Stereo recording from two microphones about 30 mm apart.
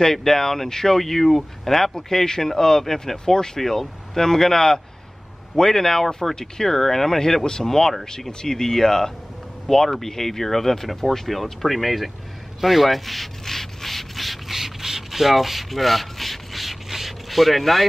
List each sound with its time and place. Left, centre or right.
0.0 s speech: centre
2.0 s speech: centre
12.5 s rub: centre
14.5 s rub: centre